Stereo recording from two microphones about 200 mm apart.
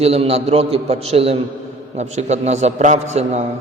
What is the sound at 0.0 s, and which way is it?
A man's voice, 30° right (ahead or behind).